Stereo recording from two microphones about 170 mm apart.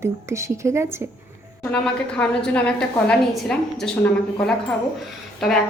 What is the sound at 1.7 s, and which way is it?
A woman's voice, 5° left (ahead or behind).